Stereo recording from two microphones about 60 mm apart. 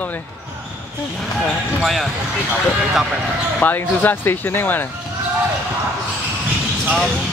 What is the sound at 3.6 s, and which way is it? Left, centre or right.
Speech, left.